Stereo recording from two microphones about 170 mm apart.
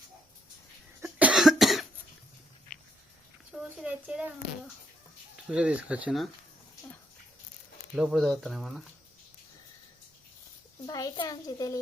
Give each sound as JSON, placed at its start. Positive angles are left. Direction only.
{"t": 1.0, "sound": "cough", "side_deg": -5}
{"t": 3.5, "sound": "a sound", "side_deg": -5}
{"t": 5.5, "sound": "speech", "side_deg": -5}
{"t": 7.9, "sound": "speech", "side_deg": -5}
{"t": 10.8, "sound": "a child's voice", "side_deg": 25}